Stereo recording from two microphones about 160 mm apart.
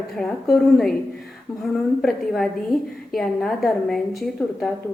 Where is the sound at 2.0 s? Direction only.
Centre (ahead or behind).